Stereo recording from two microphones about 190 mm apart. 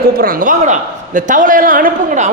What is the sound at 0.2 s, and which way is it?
A man's voice, 45° right (ahead or behind).